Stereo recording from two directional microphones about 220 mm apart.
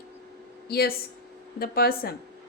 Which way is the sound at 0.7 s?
45° left (ahead or behind).